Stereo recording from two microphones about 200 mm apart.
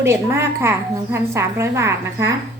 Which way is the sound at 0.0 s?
15° right (ahead or behind).